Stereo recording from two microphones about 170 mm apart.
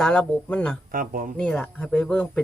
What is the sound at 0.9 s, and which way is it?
Speech, 55° right (ahead or behind).